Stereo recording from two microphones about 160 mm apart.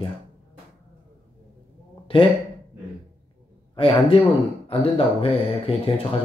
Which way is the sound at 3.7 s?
30° left (ahead or behind).